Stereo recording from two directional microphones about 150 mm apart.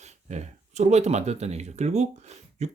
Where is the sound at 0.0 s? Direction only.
50° right (ahead or behind).